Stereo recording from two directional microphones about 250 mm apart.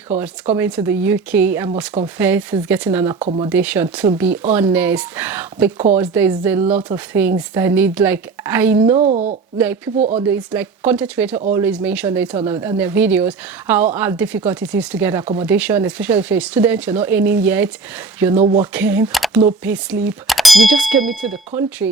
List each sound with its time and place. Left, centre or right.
0.5 s a woman's voice: centre
3.2 s a woman's voice: right
3.5 s a woman's voice: centre
8.8 s a woman's voice: right
9.6 s a woman's voice: centre
10.0 s a woman's voice: right
10.5 s a woman's voice: centre
18.3 s a woman's voice: right
18.6 s a woman's voice: centre